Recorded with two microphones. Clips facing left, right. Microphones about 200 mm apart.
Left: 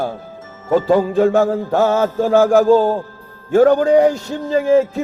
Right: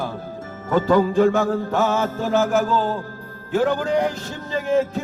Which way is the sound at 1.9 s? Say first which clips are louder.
Left 7 dB; 45° left (ahead or behind).